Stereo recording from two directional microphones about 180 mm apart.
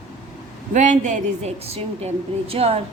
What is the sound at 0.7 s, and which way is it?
A woman's voice, 40° right (ahead or behind).